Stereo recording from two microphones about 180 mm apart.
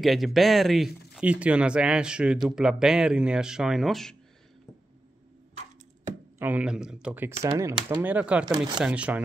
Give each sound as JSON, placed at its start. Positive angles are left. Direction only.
{"t": 0.0, "sound": "speech", "side_deg": 0}
{"t": 6.4, "sound": "speech", "side_deg": -5}
{"t": 8.5, "sound": "speech", "side_deg": -20}
{"t": 8.7, "sound": "speech", "side_deg": -5}